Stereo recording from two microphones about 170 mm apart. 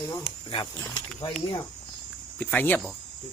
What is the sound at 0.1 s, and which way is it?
Speech, 25° left (ahead or behind).